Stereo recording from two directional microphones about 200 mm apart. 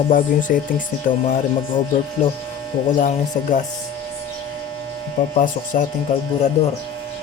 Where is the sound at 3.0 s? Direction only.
40° left (ahead or behind).